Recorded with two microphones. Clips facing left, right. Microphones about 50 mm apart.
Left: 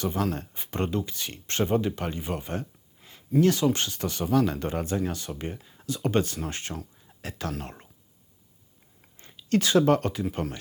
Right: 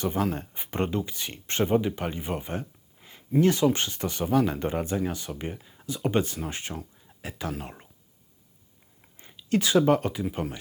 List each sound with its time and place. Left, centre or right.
0.0 s speech: centre
9.4 s speech: centre